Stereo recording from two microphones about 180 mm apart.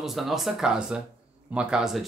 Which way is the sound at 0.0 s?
Centre (ahead or behind).